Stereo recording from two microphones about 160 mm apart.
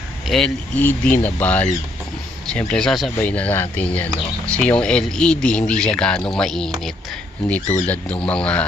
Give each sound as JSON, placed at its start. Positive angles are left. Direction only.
{"t": 0.3, "sound": "speech", "side_deg": 5}